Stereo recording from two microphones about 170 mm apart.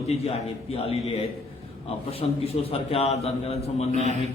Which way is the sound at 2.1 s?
35° left (ahead or behind).